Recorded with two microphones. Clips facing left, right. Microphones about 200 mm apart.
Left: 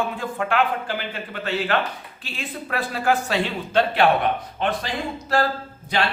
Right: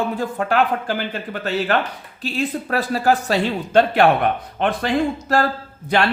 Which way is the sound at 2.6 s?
40° right (ahead or behind).